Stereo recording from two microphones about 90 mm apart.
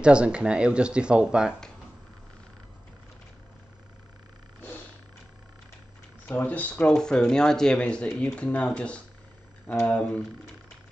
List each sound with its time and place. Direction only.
0.0 s speech: 10° right (ahead or behind)
6.2 s speech: 20° left (ahead or behind)